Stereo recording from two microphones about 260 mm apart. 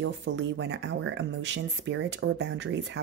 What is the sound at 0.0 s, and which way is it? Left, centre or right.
Speech, right.